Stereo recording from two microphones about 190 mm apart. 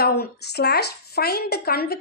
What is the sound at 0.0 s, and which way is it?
A woman's voice, 55° left (ahead or behind).